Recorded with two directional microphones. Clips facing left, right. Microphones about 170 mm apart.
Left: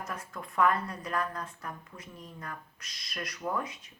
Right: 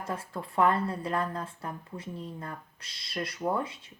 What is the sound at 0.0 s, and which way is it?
Speech, 30° right (ahead or behind).